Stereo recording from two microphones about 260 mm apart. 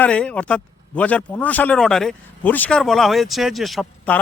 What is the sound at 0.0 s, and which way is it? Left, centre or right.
Speech, centre.